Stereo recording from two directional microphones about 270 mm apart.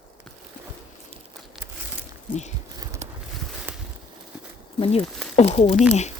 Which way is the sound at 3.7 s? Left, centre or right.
Centre.